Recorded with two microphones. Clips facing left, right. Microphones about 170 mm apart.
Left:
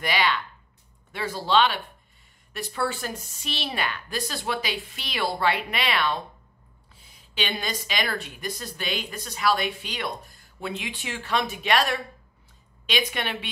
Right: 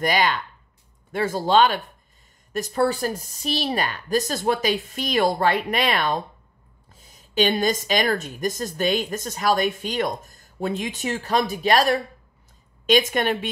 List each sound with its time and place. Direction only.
0.0 s a woman's voice: 45° right (ahead or behind)